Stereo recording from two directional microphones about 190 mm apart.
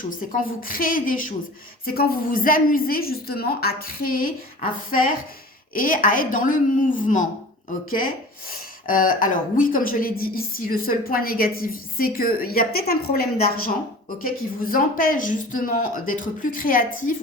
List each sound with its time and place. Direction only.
0.3 s speech: 50° left (ahead or behind)
5.7 s speech: 45° left (ahead or behind)